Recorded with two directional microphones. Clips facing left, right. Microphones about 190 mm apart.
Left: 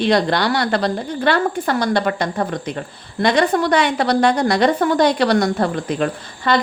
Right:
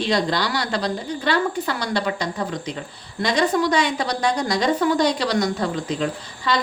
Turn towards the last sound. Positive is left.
turn(degrees=55)  # may be behind; listen again after turning